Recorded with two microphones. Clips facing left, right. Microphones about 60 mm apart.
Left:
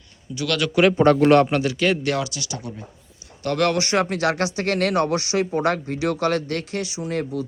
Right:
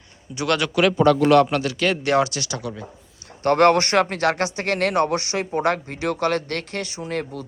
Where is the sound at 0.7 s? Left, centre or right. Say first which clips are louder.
Left 2 dB; left.